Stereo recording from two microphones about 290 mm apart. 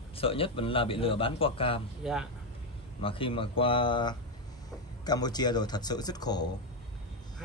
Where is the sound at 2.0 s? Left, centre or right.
Centre.